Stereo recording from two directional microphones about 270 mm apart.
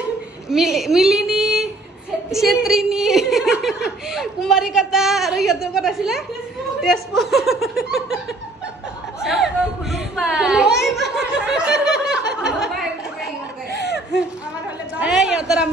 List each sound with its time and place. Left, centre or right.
0.5 s a woman's voice: centre
9.2 s chatter: centre
10.9 s snicker: centre
13.7 s laughter: left
15.0 s a woman's voice: centre